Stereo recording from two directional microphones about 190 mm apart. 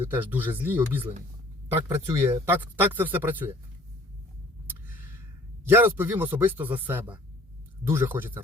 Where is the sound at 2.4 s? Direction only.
10° right (ahead or behind).